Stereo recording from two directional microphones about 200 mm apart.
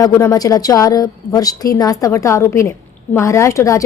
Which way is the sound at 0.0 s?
15° left (ahead or behind).